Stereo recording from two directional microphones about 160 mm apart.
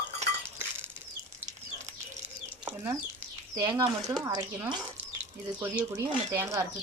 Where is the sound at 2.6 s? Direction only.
15° right (ahead or behind).